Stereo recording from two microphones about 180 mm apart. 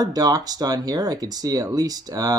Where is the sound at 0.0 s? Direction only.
20° right (ahead or behind).